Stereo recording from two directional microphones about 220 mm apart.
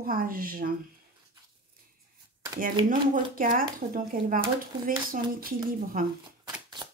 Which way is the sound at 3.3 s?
40° right (ahead or behind).